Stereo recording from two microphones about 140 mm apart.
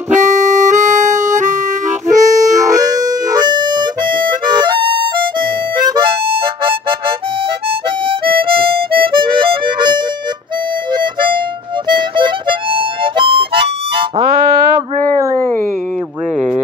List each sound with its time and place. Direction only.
0.1 s harmonica: 60° right (ahead or behind)
2.0 s music: 60° right (ahead or behind)
2.6 s harmonica: 30° right (ahead or behind)